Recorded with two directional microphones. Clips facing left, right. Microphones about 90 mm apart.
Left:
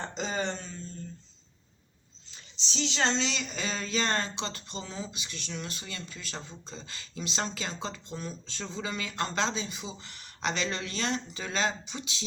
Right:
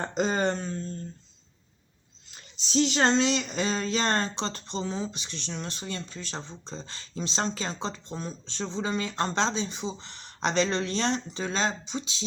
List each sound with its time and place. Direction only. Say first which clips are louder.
0.0 s speech: right 6 dB; 45° right (ahead or behind)
2.3 s speech: right 12 dB; 45° right (ahead or behind); by 12.2 s 25° right (ahead or behind)